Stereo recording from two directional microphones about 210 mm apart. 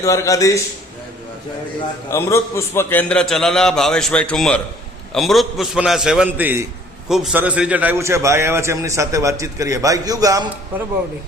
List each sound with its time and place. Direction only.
0.0 s a man's voice: 15° left (ahead or behind)
2.0 s a man's voice: 10° left (ahead or behind); by 10.8 s 15° right (ahead or behind)